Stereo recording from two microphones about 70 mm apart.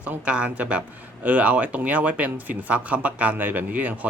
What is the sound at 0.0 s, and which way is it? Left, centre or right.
Speech, centre.